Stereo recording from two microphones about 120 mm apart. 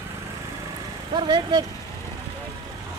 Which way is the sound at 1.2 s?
40° right (ahead or behind).